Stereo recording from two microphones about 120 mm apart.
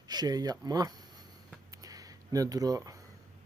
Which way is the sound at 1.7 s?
30° right (ahead or behind).